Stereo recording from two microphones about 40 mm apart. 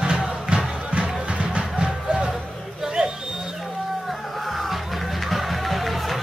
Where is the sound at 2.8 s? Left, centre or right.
Right.